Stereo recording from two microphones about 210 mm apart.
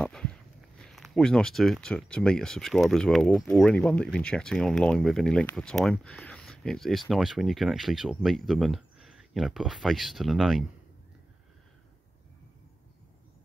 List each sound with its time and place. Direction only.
0.0 s speech: 5° left (ahead or behind)